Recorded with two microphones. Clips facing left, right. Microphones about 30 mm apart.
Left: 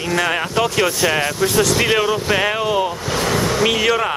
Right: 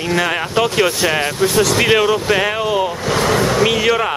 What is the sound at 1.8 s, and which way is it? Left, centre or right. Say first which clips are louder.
Speech: right 3 dB; centre.